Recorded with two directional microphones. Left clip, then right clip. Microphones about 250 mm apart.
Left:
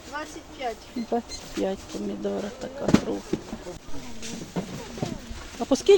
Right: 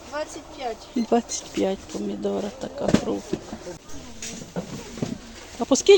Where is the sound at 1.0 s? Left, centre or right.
Right.